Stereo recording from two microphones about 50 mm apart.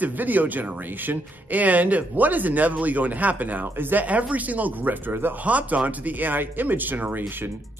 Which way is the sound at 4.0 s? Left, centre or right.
Right.